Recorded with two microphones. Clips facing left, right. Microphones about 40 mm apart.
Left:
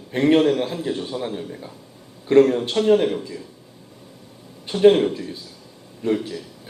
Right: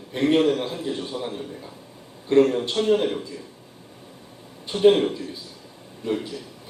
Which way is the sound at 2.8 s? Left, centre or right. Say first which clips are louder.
Left 4 dB; left.